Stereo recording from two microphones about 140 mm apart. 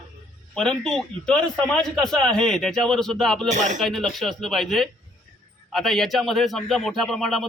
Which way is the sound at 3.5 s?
60° right (ahead or behind).